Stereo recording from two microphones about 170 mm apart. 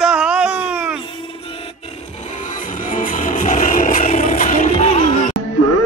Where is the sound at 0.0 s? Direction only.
5° right (ahead or behind).